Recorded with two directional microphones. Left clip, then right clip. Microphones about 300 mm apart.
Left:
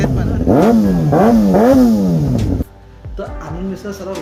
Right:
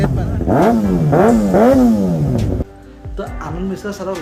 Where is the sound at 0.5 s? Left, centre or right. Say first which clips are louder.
Left 1 dB; left.